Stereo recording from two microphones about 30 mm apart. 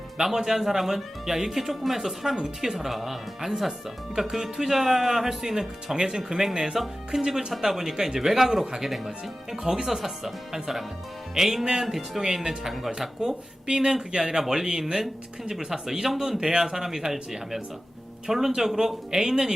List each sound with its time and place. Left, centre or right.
0.4 s speech: centre
11.3 s speech: centre
12.9 s speech: right
16.6 s speech: centre